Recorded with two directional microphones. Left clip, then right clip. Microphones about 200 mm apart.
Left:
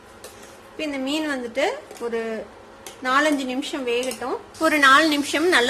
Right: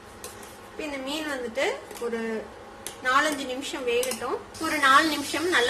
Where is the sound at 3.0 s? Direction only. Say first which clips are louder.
Left 3 dB; 45° left (ahead or behind).